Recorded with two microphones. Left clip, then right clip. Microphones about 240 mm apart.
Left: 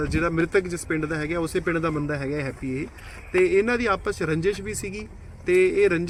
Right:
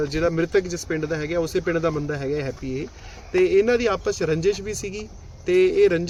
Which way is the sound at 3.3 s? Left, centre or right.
Right.